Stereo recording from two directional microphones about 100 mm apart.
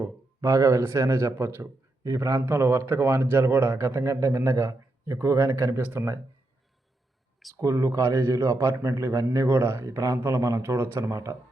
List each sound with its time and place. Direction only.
0.0 s a man's voice: 30° right (ahead or behind)
7.5 s a man's voice: 30° right (ahead or behind)